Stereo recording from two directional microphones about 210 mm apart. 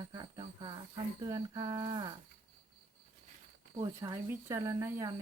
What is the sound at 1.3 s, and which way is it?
Speech, 20° right (ahead or behind).